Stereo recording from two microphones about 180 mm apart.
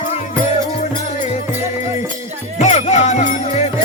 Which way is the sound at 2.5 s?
40° left (ahead or behind).